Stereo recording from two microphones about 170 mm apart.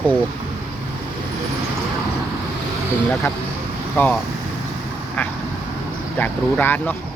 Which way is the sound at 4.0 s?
10° left (ahead or behind).